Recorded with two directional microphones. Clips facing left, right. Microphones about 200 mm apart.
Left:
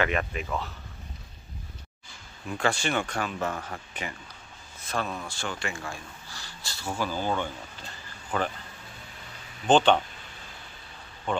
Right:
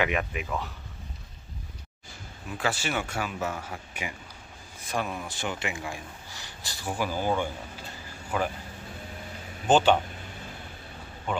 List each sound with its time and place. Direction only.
0.0 s speech: 10° right (ahead or behind)
2.5 s speech: 5° right (ahead or behind)
9.7 s speech: 5° right (ahead or behind)
11.3 s speech: 5° right (ahead or behind)